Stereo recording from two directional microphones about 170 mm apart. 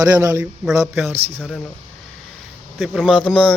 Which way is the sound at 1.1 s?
35° right (ahead or behind).